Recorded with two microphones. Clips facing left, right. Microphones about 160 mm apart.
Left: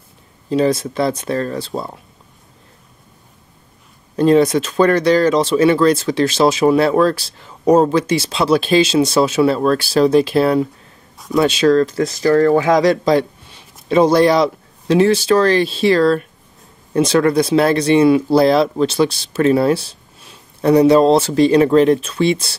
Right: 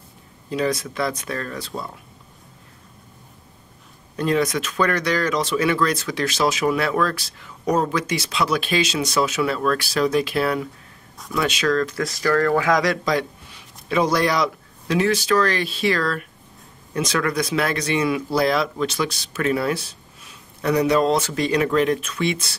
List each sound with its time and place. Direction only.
0.5 s speech: 30° left (ahead or behind)
4.2 s speech: 30° left (ahead or behind)